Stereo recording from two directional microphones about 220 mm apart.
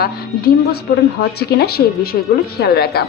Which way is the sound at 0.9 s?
40° left (ahead or behind).